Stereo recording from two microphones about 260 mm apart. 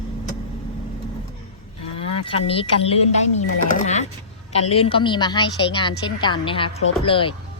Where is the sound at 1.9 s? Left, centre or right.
Left.